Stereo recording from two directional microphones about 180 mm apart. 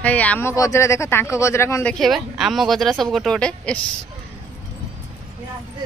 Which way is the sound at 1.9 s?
Centre (ahead or behind).